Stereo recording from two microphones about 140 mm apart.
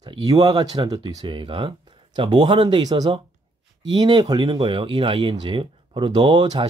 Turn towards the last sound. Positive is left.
turn(degrees=-30)  # may be behind; listen again after turning